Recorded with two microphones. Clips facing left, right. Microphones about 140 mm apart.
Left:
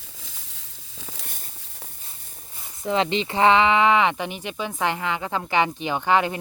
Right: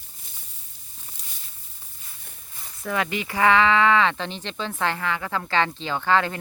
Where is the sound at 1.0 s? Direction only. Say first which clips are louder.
Left 9 dB; 75° left (ahead or behind).